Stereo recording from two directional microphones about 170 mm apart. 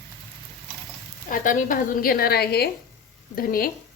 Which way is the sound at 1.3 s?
55° left (ahead or behind).